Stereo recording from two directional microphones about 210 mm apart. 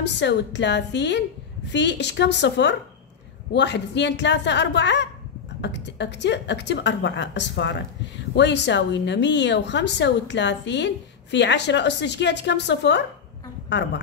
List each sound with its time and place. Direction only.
0.0 s a woman's voice: 55° left (ahead or behind)